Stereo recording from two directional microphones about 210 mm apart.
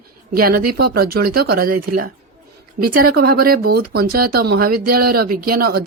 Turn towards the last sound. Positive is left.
turn(degrees=-45)  # may be behind; listen again after turning